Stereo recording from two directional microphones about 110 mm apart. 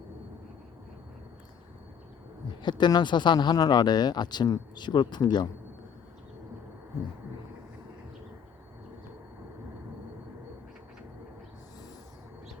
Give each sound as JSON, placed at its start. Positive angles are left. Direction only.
{"t": 2.6, "sound": "speech", "side_deg": 45}